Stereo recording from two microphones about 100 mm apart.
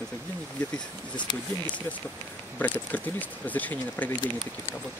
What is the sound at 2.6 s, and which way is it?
Speech, 15° left (ahead or behind).